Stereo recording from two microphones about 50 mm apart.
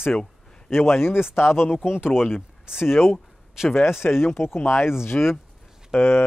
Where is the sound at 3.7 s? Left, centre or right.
Left.